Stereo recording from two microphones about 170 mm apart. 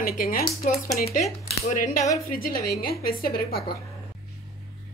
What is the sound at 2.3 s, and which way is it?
A woman's voice, 60° left (ahead or behind).